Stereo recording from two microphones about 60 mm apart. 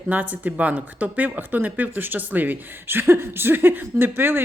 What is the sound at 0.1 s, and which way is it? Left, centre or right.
Speech, right.